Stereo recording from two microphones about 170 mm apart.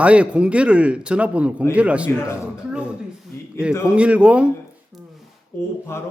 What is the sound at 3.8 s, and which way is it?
Speech, 5° right (ahead or behind).